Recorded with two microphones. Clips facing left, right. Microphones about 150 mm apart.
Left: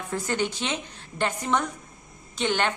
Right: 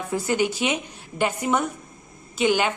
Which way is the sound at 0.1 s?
10° right (ahead or behind).